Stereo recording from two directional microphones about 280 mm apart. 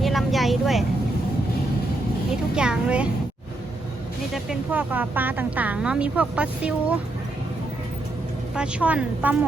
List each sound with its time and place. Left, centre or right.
0.0 s vehicle: centre
2.6 s speech: centre
4.4 s speech: centre
8.5 s speech: centre